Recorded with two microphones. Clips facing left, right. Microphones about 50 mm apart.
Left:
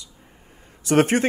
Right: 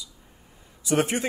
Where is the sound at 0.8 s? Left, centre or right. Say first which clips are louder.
Left 6 dB; left.